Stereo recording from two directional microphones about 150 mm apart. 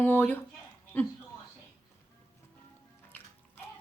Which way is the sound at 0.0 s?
15° left (ahead or behind).